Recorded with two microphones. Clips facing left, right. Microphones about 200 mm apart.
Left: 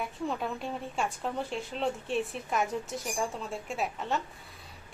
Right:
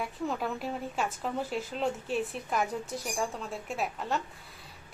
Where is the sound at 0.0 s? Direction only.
Centre (ahead or behind).